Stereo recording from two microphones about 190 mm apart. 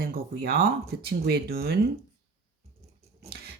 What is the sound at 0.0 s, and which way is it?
Speech, 55° right (ahead or behind).